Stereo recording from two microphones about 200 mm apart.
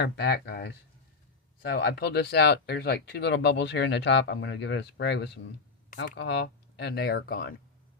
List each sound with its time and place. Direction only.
0.0 s speech: 55° left (ahead or behind)